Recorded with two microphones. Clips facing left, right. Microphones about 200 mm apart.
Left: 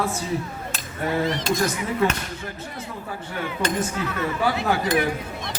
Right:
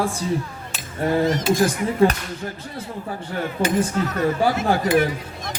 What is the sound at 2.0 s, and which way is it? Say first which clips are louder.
Speech: right 6 dB; 30° right (ahead or behind).